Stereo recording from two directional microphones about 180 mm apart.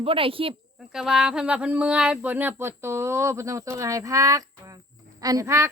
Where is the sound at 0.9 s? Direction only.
Centre (ahead or behind).